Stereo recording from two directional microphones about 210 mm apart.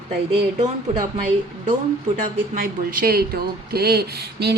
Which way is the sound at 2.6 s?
45° right (ahead or behind).